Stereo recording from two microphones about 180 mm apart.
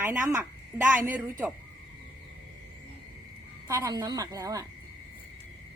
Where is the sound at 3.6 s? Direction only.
20° right (ahead or behind).